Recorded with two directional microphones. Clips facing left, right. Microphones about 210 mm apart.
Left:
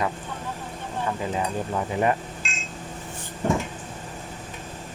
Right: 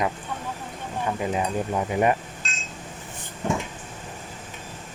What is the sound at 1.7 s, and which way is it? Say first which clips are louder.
Speech: right 1 dB; 15° right (ahead or behind).